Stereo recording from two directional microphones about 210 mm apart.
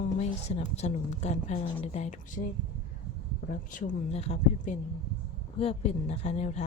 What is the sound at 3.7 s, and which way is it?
A woman's voice, 35° left (ahead or behind).